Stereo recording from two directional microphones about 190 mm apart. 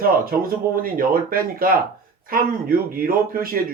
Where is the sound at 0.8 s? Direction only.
50° right (ahead or behind).